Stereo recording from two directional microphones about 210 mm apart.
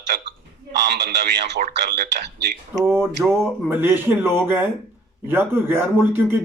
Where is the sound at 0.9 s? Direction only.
50° right (ahead or behind).